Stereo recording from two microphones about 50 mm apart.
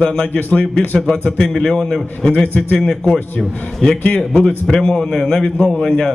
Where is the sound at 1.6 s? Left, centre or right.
Centre.